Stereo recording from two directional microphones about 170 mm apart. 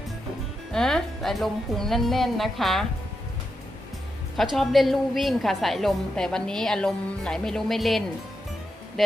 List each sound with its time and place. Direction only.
0.7 s a woman's voice: 5° left (ahead or behind)
4.5 s a woman's voice: centre (ahead or behind)